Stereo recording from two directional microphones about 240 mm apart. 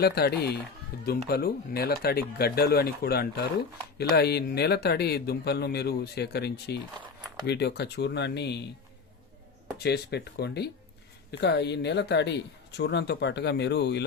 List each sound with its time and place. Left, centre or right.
0.0 s speech: left
9.7 s speech: left